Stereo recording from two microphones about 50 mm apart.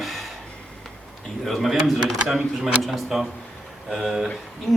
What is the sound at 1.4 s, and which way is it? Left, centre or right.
A man's voice, centre.